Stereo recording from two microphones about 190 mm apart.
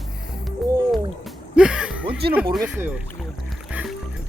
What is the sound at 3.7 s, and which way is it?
Music, 5° right (ahead or behind).